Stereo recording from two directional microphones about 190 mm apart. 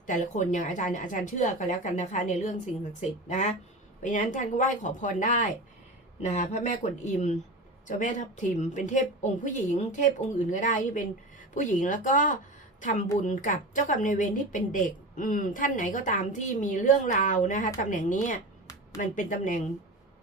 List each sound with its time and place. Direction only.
0.0 s a woman's voice: 40° left (ahead or behind)